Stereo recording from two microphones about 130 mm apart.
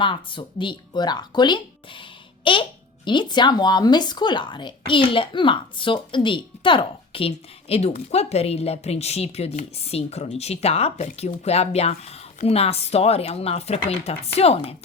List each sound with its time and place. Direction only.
0.0 s speech: 40° left (ahead or behind)